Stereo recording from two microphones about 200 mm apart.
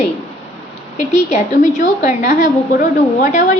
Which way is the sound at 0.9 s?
35° left (ahead or behind).